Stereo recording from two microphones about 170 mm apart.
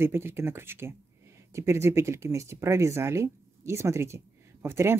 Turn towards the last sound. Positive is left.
turn(degrees=-15)  # may be behind; listen again after turning